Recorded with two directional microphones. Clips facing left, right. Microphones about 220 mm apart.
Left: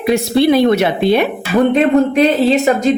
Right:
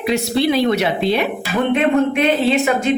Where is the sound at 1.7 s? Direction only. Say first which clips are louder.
Left 2 dB; 35° left (ahead or behind).